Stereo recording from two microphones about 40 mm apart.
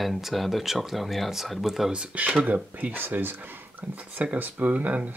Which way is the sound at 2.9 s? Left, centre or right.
Right.